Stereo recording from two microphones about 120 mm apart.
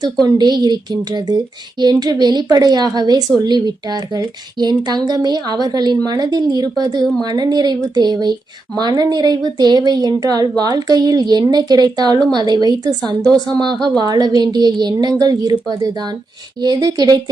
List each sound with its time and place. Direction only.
0.3 s speech: 35° right (ahead or behind)
16.6 s speech: 35° right (ahead or behind)